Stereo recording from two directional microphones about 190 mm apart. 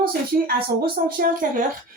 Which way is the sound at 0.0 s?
50° right (ahead or behind).